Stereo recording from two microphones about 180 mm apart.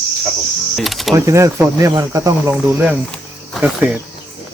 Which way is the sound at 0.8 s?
Centre (ahead or behind).